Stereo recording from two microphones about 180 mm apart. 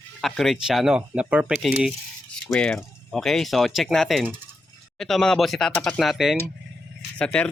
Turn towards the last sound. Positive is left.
turn(degrees=5)  # may be behind; listen again after turning